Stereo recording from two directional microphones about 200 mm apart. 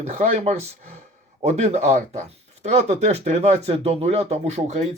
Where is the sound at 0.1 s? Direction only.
35° right (ahead or behind).